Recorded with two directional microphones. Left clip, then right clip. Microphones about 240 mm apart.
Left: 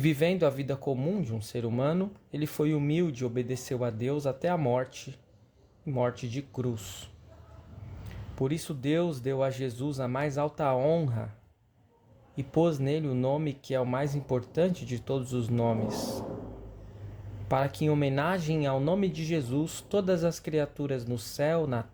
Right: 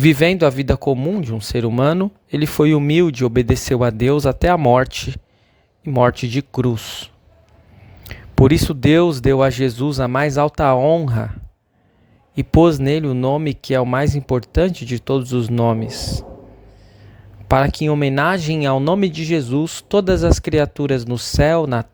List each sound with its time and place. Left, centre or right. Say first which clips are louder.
0.0 s speech: right 12 dB; right
12.4 s speech: right 14 dB; right
17.5 s speech: right 12 dB; right